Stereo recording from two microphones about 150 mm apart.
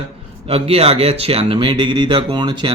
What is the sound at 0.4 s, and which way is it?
Speech, 40° right (ahead or behind).